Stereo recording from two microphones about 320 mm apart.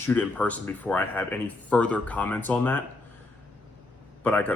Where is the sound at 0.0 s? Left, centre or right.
Centre.